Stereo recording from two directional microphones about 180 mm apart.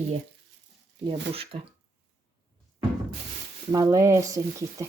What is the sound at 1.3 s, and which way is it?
Speech, 30° right (ahead or behind).